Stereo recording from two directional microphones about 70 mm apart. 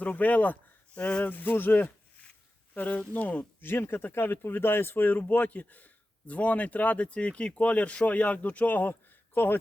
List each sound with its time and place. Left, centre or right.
0.0 s speech: left